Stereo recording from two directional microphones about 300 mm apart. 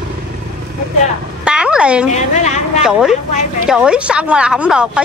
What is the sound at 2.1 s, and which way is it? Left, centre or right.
Speech, left.